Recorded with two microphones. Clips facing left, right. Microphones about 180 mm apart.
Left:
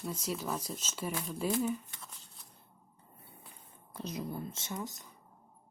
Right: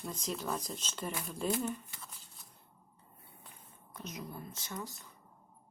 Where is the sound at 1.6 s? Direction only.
Centre (ahead or behind).